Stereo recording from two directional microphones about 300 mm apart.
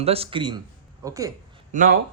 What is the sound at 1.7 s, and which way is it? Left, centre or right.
Speech, right.